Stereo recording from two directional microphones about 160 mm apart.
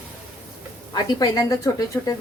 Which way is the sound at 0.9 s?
25° left (ahead or behind).